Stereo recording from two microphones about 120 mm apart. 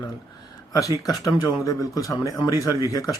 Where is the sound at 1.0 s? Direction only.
30° left (ahead or behind).